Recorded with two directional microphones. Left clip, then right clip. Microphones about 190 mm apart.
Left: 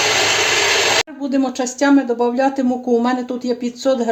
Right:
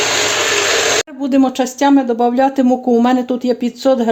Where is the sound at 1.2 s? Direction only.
55° right (ahead or behind).